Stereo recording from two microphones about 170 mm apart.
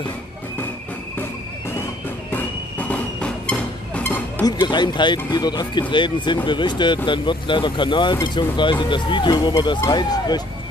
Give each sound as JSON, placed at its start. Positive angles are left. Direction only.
{"t": 2.3, "sound": "music", "side_deg": 10}
{"t": 4.5, "sound": "speech", "side_deg": 25}